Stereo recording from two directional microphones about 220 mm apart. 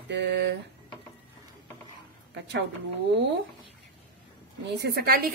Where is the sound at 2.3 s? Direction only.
55° right (ahead or behind).